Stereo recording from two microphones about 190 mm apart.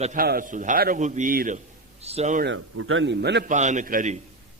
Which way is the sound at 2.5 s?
90° right.